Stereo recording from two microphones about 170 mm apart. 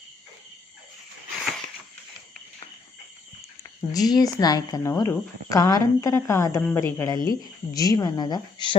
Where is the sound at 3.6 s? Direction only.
20° left (ahead or behind).